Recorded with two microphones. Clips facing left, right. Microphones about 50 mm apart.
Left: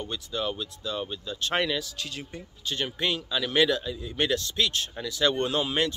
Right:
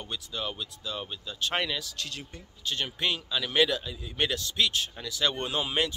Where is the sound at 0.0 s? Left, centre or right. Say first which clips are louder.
Left 4 dB; centre.